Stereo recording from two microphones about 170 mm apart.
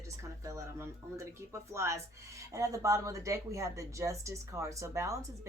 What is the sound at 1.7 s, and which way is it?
A woman's voice, 15° right (ahead or behind).